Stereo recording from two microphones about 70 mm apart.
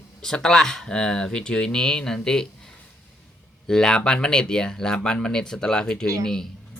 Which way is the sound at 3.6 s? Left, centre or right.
Centre.